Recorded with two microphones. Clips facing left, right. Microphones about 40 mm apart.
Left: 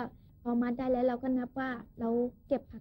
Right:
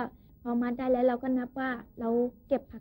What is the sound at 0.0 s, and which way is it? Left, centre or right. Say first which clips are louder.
A woman's voice: right 2 dB; right.